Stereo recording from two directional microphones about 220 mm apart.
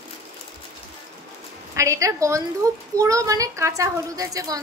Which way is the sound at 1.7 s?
15° right (ahead or behind).